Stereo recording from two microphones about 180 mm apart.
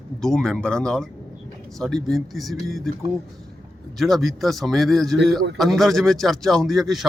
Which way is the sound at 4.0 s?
Centre (ahead or behind).